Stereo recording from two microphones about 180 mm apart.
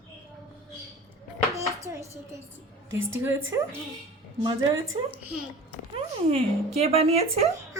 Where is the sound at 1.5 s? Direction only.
15° right (ahead or behind).